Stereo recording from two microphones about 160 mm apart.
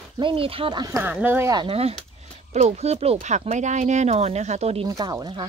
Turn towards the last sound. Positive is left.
turn(degrees=-30)  # may be behind; listen again after turning